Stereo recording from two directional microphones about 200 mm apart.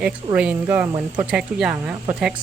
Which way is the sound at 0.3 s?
5° right (ahead or behind).